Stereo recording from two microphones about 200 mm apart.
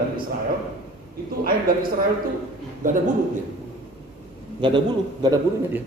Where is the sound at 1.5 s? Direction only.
45° right (ahead or behind).